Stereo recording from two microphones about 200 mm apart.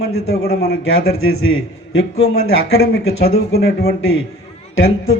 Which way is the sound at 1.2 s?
90° left.